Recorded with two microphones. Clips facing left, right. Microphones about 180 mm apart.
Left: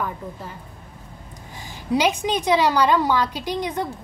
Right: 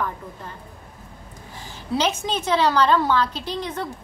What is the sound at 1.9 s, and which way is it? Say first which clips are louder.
A woman's voice: left 3 dB; 15° left (ahead or behind).